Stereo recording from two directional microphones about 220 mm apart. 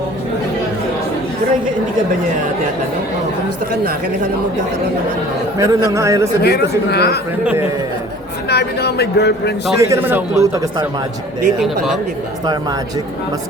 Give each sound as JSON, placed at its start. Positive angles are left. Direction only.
{"t": 5.5, "sound": "a man's voice", "side_deg": -15}
{"t": 6.4, "sound": "speech", "side_deg": 45}
{"t": 8.4, "sound": "speech", "side_deg": 50}
{"t": 9.7, "sound": "a man's voice", "side_deg": -10}